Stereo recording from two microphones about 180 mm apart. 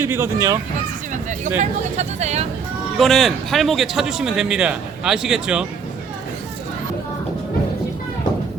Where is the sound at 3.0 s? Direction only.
Centre (ahead or behind).